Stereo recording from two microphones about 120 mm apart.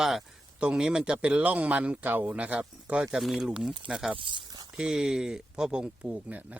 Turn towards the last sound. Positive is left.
turn(degrees=-10)  # may be behind; listen again after turning